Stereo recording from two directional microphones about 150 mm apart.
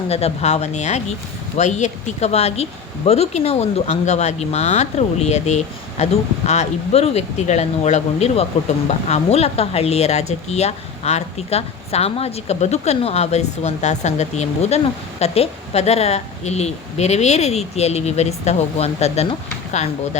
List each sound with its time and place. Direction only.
0.1 s speech: 45° left (ahead or behind)